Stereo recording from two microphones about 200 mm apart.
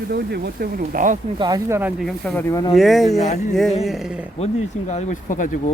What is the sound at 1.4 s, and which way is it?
Speech, 15° right (ahead or behind).